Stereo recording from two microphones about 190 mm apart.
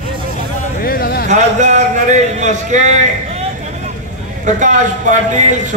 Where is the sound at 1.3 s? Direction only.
40° right (ahead or behind).